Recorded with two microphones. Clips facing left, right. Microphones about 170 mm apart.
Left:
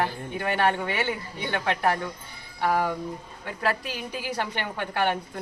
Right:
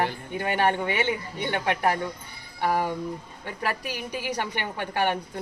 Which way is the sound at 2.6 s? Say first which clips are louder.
Even; 15° right (ahead or behind).